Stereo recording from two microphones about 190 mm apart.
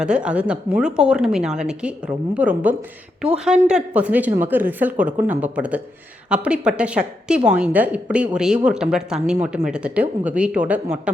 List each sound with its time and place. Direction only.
0.0 s a woman's voice: 5° right (ahead or behind)